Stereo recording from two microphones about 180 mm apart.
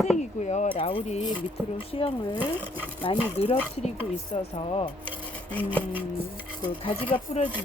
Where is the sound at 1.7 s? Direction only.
30° left (ahead or behind).